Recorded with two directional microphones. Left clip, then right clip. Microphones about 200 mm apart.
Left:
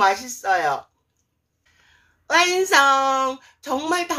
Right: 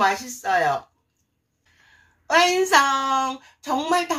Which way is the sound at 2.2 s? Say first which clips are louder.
Even; 45° left (ahead or behind).